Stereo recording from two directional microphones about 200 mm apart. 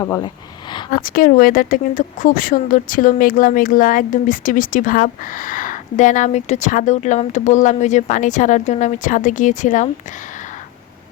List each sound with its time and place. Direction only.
0.0 s speech: 15° left (ahead or behind)
1.0 s speech: 45° left (ahead or behind)